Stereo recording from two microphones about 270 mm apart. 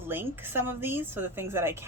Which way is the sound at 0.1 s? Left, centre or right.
Centre.